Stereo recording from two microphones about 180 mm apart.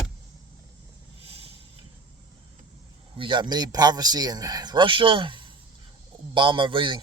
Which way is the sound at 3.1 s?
25° right (ahead or behind).